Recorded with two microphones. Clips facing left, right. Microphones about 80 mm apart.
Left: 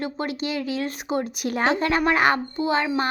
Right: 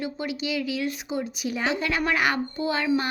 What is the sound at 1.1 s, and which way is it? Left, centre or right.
A woman's voice, left.